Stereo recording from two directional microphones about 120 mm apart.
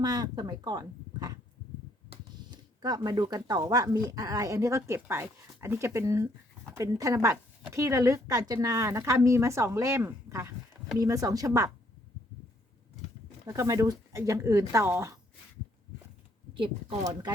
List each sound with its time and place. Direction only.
0.0 s speech: 35° right (ahead or behind)
2.8 s a woman's voice: 35° right (ahead or behind)
13.5 s a woman's voice: 30° right (ahead or behind)
17.0 s speech: 35° right (ahead or behind)